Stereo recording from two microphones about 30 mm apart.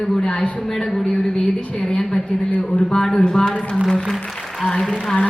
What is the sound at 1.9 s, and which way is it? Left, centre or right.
Speech, left.